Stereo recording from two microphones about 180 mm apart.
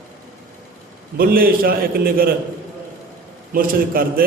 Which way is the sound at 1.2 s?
55° right (ahead or behind).